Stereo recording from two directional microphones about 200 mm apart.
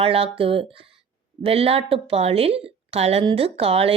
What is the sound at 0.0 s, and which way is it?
Speech, 30° right (ahead or behind).